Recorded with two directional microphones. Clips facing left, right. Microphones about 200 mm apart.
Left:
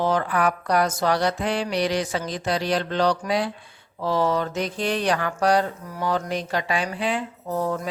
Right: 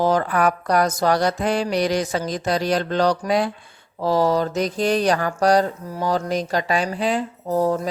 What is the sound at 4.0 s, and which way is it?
Mantra, 40° right (ahead or behind).